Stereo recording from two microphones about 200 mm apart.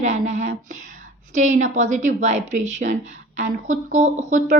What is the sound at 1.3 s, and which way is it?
A woman's voice, 35° right (ahead or behind).